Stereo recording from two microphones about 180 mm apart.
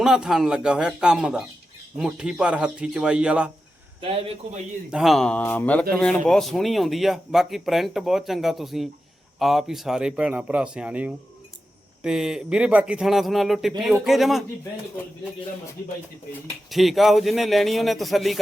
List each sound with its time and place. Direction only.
0.0 s speech: 5° right (ahead or behind)
4.0 s speech: 30° right (ahead or behind)
4.9 s speech: centre (ahead or behind)
16.6 s speech: centre (ahead or behind)